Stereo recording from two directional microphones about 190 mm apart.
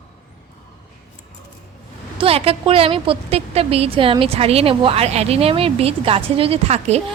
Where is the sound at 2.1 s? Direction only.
30° right (ahead or behind).